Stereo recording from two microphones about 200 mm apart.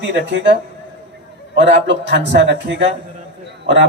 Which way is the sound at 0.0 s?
65° right (ahead or behind).